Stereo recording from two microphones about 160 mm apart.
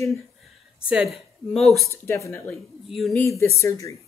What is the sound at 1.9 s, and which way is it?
Speech, 15° left (ahead or behind).